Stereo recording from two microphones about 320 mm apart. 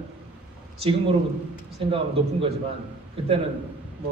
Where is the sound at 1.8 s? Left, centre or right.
Centre.